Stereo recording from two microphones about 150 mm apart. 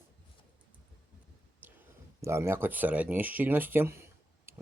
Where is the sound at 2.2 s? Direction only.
20° right (ahead or behind).